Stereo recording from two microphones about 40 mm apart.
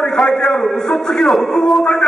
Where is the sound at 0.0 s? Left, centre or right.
Centre.